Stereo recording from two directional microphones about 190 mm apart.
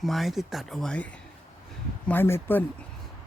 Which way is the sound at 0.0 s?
Centre (ahead or behind).